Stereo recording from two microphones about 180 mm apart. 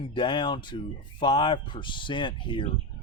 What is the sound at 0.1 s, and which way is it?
Speech, 25° left (ahead or behind).